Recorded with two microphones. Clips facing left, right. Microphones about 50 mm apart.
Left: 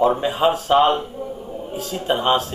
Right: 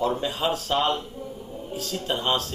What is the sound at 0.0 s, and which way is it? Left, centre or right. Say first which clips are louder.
A man's voice: left 8 dB; left.